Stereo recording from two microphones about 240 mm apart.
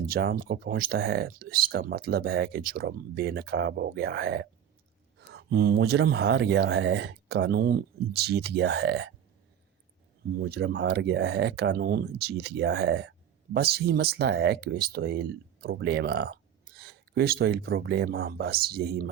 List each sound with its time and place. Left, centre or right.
0.1 s speech: right
10.3 s speech: right